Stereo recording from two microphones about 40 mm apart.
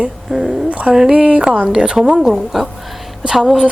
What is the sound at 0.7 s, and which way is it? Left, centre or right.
Speech, right.